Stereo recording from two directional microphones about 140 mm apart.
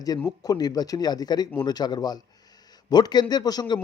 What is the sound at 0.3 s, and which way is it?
Speech, 30° left (ahead or behind).